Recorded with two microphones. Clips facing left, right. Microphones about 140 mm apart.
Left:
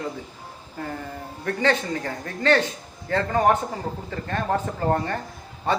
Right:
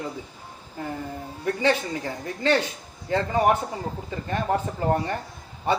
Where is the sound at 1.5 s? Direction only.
15° right (ahead or behind).